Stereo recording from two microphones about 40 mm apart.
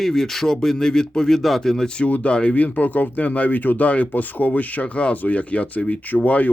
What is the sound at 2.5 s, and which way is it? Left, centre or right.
Speech, left.